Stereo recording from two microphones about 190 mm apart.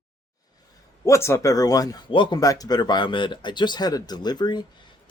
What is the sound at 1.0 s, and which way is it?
Speech, 15° left (ahead or behind).